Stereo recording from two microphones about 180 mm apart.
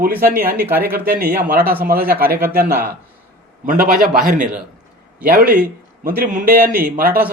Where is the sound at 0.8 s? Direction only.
55° right (ahead or behind).